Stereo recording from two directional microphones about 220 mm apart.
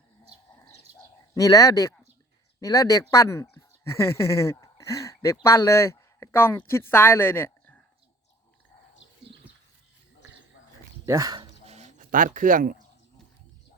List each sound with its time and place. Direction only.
1.3 s speech: 15° left (ahead or behind)
11.0 s speech: 15° right (ahead or behind)
11.6 s a sound: 30° right (ahead or behind)